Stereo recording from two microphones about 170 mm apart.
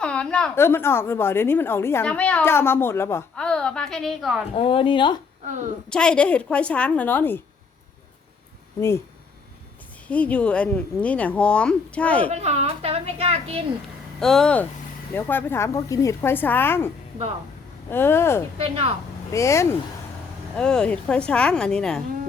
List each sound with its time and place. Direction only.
0.0 s a woman's voice: 5° left (ahead or behind)
4.5 s a woman's voice: 30° left (ahead or behind)
5.5 s a woman's voice: 50° right (ahead or behind)
5.9 s a woman's voice: 5° left (ahead or behind)
10.1 s a woman's voice: 10° left (ahead or behind)
12.3 s a woman's voice: 40° right (ahead or behind)
14.2 s a woman's voice: 5° left (ahead or behind)
17.9 s a woman's voice: 15° left (ahead or behind)
20.6 s a woman's voice: 5° left (ahead or behind)